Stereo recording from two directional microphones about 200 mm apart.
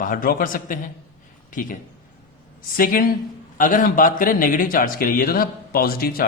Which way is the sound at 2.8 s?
45° left (ahead or behind).